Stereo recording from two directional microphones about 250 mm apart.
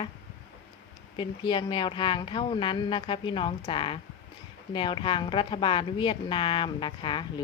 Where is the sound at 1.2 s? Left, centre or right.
Centre.